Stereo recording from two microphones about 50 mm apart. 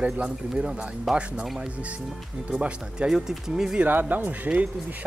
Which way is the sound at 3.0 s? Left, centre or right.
Centre.